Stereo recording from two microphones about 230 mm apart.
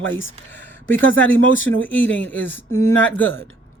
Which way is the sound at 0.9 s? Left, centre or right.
Left.